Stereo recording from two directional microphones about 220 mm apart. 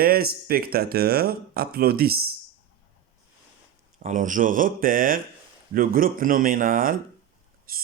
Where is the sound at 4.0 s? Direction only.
35° right (ahead or behind).